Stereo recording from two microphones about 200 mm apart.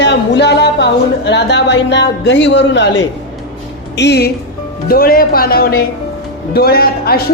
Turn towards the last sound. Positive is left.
turn(degrees=50)  # may be behind; listen again after turning